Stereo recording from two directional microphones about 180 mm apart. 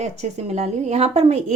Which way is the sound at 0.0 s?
40° right (ahead or behind).